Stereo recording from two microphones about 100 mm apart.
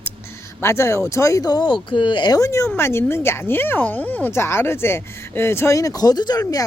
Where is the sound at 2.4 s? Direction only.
30° left (ahead or behind).